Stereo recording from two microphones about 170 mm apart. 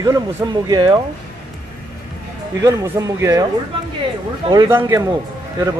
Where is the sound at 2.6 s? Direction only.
20° right (ahead or behind).